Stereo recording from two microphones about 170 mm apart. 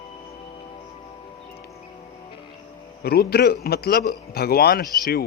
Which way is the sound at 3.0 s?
65° left (ahead or behind).